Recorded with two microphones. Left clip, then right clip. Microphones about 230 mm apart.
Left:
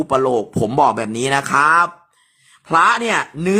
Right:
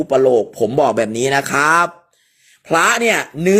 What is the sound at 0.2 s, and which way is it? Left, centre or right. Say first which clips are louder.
Speech: right 4 dB; centre.